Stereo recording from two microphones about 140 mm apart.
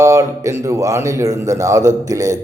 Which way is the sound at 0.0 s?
20° right (ahead or behind).